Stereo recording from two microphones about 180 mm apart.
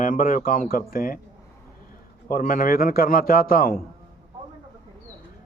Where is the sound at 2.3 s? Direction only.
50° left (ahead or behind).